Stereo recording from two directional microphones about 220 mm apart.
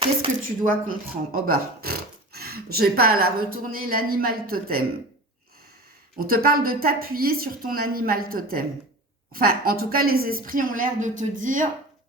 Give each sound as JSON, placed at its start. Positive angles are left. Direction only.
{"t": 0.4, "sound": "speech", "side_deg": -40}
{"t": 6.2, "sound": "speech", "side_deg": -40}